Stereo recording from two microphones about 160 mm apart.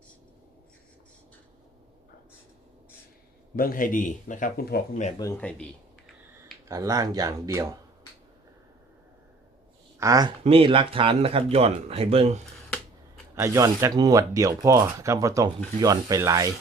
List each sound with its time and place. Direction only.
3.5 s speech: 65° left (ahead or behind)
5.4 s speech: 10° left (ahead or behind)
6.7 s speech: 20° right (ahead or behind)
10.0 s speech: 25° right (ahead or behind)
10.4 s speech: 35° right (ahead or behind)
13.3 s speech: 20° right (ahead or behind)